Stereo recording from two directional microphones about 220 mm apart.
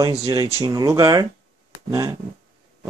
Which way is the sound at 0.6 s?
15° right (ahead or behind).